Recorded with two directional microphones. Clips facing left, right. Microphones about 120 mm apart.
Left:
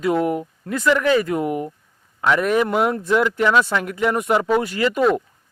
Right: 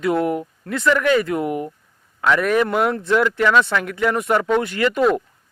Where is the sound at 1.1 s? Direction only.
35° left (ahead or behind).